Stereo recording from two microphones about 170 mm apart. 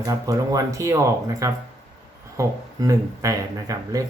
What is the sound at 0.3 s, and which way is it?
Speech, 20° right (ahead or behind).